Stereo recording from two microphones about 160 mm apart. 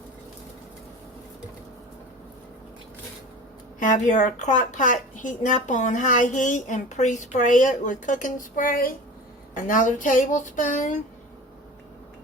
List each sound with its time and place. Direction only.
3.8 s a woman's voice: 50° left (ahead or behind)